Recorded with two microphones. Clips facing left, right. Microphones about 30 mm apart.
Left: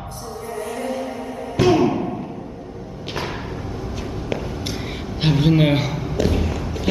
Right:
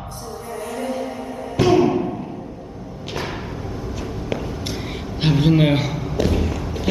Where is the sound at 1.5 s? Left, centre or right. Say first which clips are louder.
Right 1 dB; centre.